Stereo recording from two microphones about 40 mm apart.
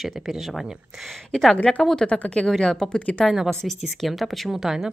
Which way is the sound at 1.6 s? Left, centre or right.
Left.